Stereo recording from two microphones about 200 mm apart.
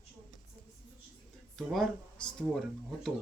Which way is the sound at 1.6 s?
Centre (ahead or behind).